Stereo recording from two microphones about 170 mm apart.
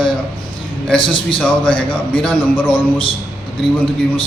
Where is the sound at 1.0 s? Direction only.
30° left (ahead or behind).